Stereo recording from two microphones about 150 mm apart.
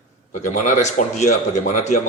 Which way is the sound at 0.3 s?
55° left (ahead or behind).